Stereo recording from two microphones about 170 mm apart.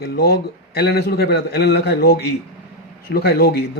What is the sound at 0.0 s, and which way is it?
Speech, 70° left (ahead or behind).